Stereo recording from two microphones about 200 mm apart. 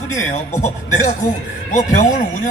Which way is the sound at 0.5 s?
40° left (ahead or behind).